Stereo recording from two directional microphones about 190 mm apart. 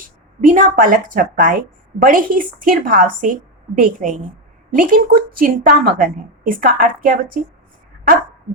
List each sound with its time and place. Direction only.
0.4 s a woman's voice: 45° right (ahead or behind)